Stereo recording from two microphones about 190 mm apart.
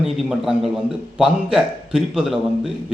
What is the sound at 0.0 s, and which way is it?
A man's voice, centre (ahead or behind).